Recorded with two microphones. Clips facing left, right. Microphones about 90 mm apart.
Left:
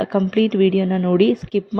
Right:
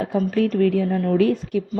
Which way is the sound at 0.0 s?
80° left.